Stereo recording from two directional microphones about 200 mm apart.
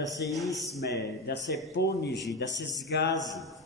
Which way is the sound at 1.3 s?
55° left (ahead or behind).